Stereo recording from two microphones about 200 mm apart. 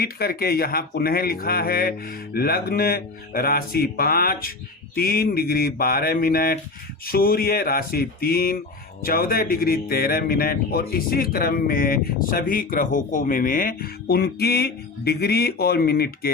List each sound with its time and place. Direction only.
0.0 s a man's voice: 50° left (ahead or behind)